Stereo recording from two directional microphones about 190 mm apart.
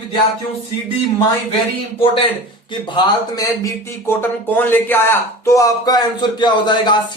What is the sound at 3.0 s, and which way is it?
Speech, 20° left (ahead or behind).